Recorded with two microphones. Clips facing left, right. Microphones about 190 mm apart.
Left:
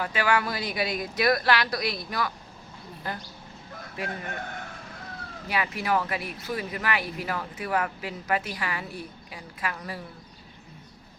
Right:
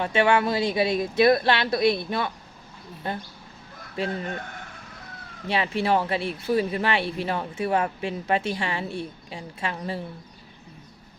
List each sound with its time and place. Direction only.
0.0 s speech: 25° right (ahead or behind)
5.5 s speech: 30° right (ahead or behind)